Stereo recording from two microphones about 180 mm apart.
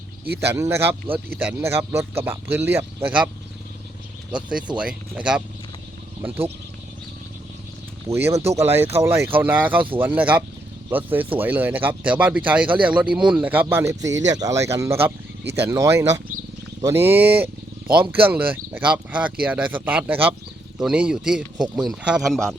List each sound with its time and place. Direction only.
0.3 s speech: 15° right (ahead or behind)
4.8 s speech: 5° right (ahead or behind)
8.0 s speech: 15° right (ahead or behind); by 22.5 s centre (ahead or behind)